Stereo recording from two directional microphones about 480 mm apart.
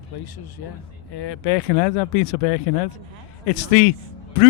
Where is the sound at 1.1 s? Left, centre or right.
Left.